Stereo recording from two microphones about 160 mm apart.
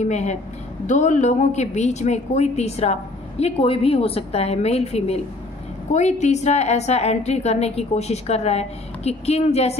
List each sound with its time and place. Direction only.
0.0 s a woman's voice: 45° left (ahead or behind)